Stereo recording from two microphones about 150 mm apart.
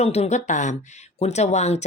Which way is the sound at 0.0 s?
45° left (ahead or behind).